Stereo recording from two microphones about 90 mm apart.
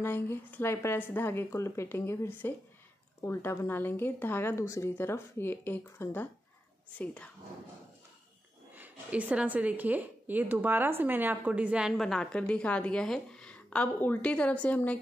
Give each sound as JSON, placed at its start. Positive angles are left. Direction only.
{"t": 0.0, "sound": "a woman's voice", "side_deg": 25}
{"t": 8.7, "sound": "a woman's voice", "side_deg": -20}
{"t": 11.9, "sound": "a woman's voice", "side_deg": 5}